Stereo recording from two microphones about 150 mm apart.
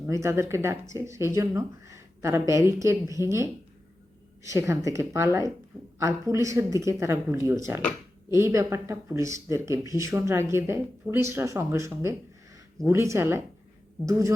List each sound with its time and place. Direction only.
0.0 s speech: 20° right (ahead or behind)